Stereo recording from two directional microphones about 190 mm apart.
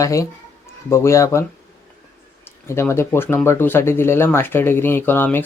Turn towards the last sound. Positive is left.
turn(degrees=10)  # may be behind; listen again after turning